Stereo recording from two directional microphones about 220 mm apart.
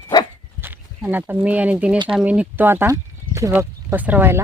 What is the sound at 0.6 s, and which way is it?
Speech, 10° right (ahead or behind).